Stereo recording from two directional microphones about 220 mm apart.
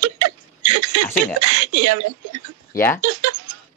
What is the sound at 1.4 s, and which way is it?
Speech, 90° right.